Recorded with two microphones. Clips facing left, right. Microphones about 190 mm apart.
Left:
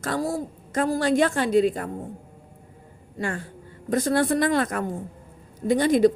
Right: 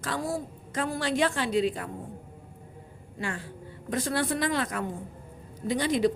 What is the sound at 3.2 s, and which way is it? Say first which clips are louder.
A woman's voice: left 5 dB; 45° left (ahead or behind).